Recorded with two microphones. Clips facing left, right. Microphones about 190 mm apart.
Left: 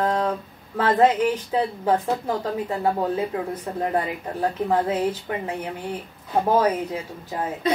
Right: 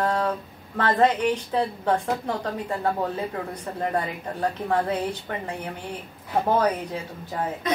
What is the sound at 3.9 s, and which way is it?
A woman's voice, 5° left (ahead or behind).